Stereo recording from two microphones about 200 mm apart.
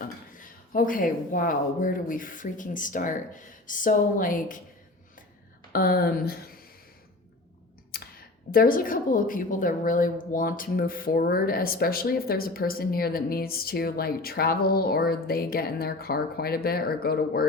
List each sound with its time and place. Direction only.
0.0 s speech: 45° left (ahead or behind)
5.7 s a woman's voice: 50° left (ahead or behind)
7.9 s a sound: 50° left (ahead or behind)
8.5 s a woman's voice: 45° left (ahead or behind)